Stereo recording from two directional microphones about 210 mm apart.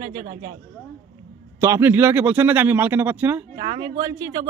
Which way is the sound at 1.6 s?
10° right (ahead or behind).